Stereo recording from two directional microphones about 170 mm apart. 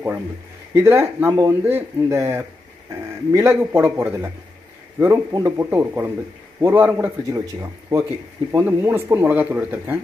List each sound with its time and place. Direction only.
0.7 s speech: 15° right (ahead or behind)